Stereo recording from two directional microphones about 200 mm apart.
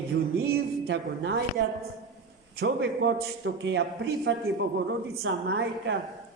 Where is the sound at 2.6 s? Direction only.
65° right (ahead or behind).